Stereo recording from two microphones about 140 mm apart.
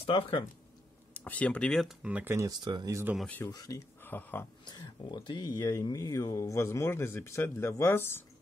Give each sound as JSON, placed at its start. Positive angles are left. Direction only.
{"t": 0.0, "sound": "speech", "side_deg": 40}
{"t": 1.1, "sound": "speech", "side_deg": 10}
{"t": 2.0, "sound": "speech", "side_deg": -10}
{"t": 2.3, "sound": "speech", "side_deg": -25}
{"t": 3.4, "sound": "speech", "side_deg": 25}
{"t": 4.0, "sound": "speech", "side_deg": 15}
{"t": 4.6, "sound": "speech", "side_deg": 30}